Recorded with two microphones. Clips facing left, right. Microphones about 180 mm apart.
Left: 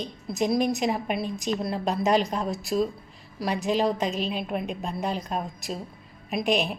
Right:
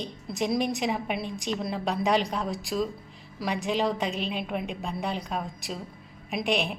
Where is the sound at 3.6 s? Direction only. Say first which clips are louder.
Left 3 dB; 40° left (ahead or behind).